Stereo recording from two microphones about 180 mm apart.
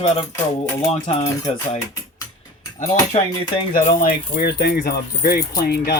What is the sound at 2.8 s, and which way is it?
Speech, 40° left (ahead or behind).